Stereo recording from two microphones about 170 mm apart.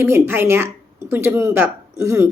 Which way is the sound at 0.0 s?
15° right (ahead or behind).